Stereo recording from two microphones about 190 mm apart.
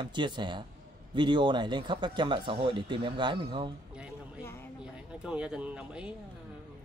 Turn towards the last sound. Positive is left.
turn(degrees=-5)  # may be behind; listen again after turning